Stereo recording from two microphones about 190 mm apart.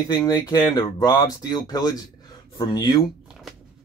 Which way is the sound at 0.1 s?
20° left (ahead or behind).